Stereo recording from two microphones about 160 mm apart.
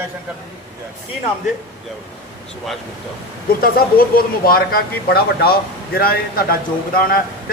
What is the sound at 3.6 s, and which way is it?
Speech, 65° left (ahead or behind).